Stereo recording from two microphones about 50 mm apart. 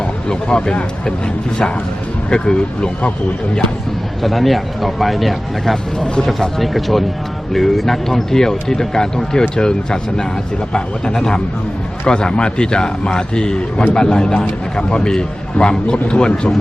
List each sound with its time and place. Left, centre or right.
0.0 s speech: centre
2.3 s speech: centre
4.2 s speech: centre
6.6 s speech: centre